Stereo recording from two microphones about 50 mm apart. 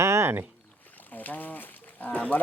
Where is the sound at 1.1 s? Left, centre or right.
Left.